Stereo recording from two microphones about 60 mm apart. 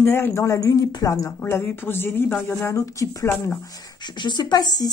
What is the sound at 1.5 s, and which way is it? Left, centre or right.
Speech, left.